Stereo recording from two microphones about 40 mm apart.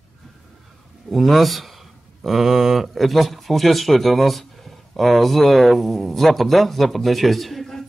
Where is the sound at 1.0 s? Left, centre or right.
Centre.